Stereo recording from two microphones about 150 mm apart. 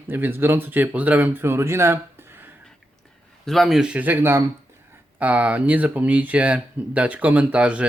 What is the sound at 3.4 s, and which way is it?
Speech, centre (ahead or behind).